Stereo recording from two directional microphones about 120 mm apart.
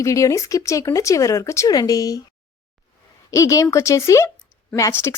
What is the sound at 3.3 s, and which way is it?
Speech, 25° left (ahead or behind).